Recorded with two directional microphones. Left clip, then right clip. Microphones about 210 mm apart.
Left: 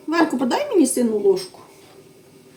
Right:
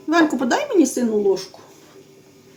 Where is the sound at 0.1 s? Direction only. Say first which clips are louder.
Right 2 dB; 25° right (ahead or behind).